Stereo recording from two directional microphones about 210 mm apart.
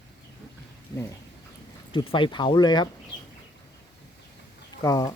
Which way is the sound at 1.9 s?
25° left (ahead or behind).